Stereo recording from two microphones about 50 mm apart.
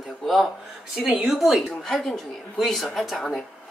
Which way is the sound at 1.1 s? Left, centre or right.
Centre.